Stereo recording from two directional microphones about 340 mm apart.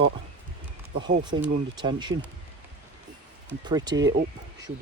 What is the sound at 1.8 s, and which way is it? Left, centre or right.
Speech, centre.